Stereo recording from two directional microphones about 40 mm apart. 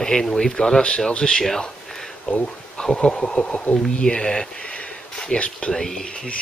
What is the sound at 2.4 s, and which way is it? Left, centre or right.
Speech, centre.